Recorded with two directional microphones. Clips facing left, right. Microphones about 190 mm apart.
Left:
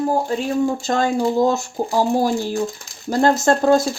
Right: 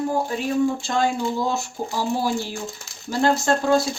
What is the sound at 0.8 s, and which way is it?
Speech, 45° left (ahead or behind).